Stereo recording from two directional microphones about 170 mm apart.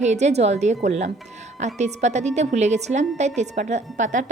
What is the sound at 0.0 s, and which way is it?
A woman's voice, 40° right (ahead or behind).